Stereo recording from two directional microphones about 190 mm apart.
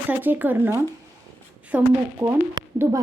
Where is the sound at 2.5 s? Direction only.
20° right (ahead or behind).